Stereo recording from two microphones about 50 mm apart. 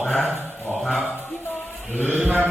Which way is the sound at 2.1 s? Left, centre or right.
Right.